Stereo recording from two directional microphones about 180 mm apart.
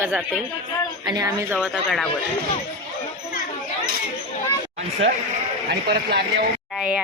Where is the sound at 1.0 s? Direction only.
20° right (ahead or behind).